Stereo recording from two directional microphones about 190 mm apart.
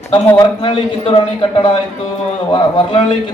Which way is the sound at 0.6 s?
25° left (ahead or behind).